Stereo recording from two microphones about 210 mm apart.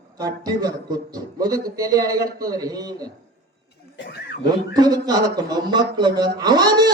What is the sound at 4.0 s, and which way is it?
Speech, 55° left (ahead or behind).